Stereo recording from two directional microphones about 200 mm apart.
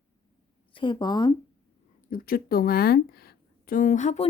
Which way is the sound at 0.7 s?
25° left (ahead or behind).